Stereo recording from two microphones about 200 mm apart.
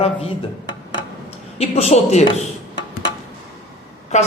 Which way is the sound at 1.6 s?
30° left (ahead or behind).